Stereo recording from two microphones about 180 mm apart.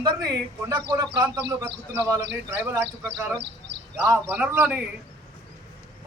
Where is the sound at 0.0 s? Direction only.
20° right (ahead or behind).